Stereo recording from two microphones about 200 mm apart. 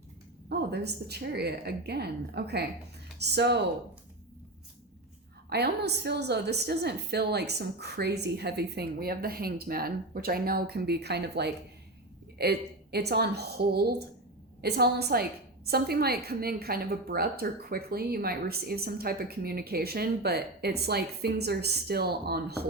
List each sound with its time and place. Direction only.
0.4 s a woman's voice: 55° right (ahead or behind)
5.5 s a woman's voice: 55° right (ahead or behind)